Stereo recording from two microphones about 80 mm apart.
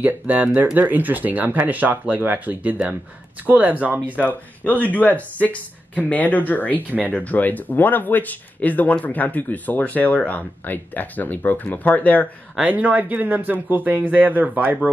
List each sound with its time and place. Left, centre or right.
0.0 s speech: centre
4.8 s speech: left
12.6 s speech: centre